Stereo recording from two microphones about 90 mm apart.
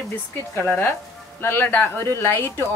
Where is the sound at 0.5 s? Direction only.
25° left (ahead or behind).